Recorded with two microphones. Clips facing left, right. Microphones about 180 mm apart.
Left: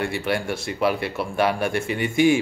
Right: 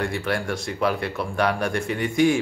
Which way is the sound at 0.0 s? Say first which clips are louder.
Left 1 dB; 5° left (ahead or behind).